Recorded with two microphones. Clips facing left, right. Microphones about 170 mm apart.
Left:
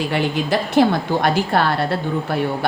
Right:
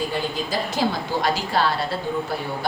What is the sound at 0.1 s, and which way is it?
A woman's voice, 70° left (ahead or behind).